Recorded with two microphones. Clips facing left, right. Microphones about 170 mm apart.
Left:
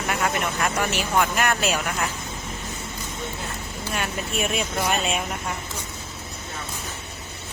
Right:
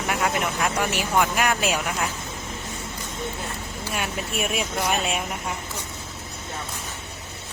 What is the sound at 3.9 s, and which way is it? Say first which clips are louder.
Speech: left 1 dB; 5° right (ahead or behind).